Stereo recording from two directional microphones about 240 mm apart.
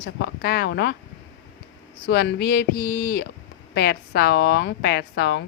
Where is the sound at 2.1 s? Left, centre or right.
Left.